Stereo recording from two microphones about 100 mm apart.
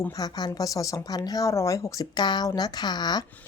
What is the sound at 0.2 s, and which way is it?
Speech, 40° left (ahead or behind).